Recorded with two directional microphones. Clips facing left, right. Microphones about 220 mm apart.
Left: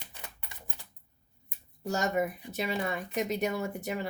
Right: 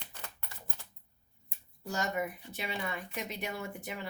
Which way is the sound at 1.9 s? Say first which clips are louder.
Left 5 dB; 45° left (ahead or behind).